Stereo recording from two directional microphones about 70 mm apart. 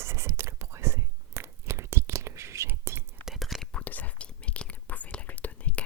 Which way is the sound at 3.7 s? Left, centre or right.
Left.